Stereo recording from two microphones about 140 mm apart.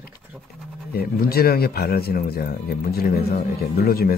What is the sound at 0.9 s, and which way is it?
Speech, 90° left.